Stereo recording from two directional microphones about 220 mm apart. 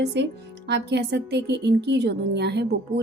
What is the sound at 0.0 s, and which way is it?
Speech, 50° right (ahead or behind).